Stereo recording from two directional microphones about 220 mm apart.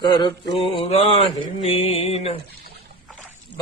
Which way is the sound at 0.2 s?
25° left (ahead or behind).